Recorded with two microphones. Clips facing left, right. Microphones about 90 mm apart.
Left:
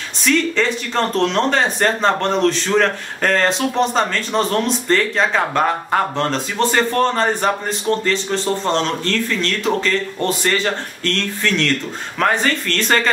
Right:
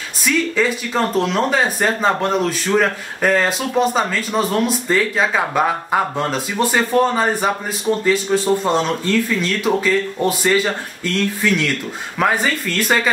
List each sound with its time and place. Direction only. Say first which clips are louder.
0.2 s speech: left 1 dB; 5° right (ahead or behind)